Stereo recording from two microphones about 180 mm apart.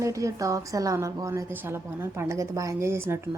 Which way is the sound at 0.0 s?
15° right (ahead or behind).